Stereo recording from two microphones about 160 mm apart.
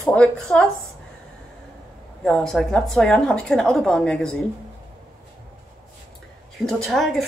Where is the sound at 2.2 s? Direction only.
Centre (ahead or behind).